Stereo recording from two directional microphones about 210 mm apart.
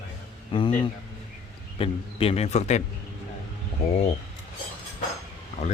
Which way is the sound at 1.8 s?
25° left (ahead or behind).